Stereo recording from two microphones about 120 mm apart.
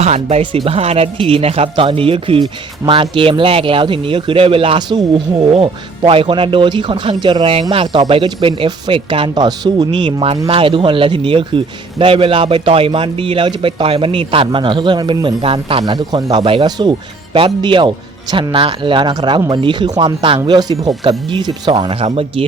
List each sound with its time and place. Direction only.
0.0 s speech: 60° right (ahead or behind); by 16.6 s 45° right (ahead or behind)
16.6 s speech: 35° right (ahead or behind)
17.3 s speech: 45° right (ahead or behind)
20.2 s speech: 45° right (ahead or behind)
20.6 s speech: 35° right (ahead or behind)
21.0 s speech: 45° right (ahead or behind)